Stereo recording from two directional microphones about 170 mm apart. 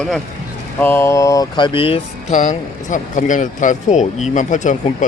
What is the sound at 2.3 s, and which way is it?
Speech, 50° left (ahead or behind).